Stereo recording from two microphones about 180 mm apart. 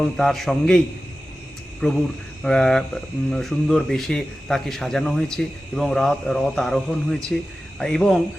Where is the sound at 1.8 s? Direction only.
5° left (ahead or behind).